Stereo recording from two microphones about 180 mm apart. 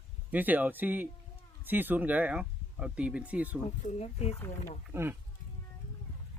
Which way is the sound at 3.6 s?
35° left (ahead or behind).